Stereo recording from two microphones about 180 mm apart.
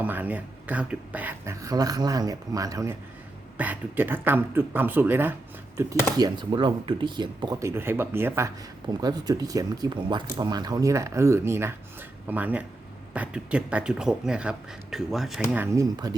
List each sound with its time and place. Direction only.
0.0 s speech: 10° right (ahead or behind)
6.1 s speech: 25° right (ahead or behind); by 15.6 s centre (ahead or behind)
15.6 s speech: 15° right (ahead or behind)